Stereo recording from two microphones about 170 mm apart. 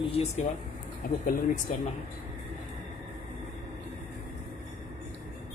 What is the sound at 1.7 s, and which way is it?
Speech, 50° left (ahead or behind).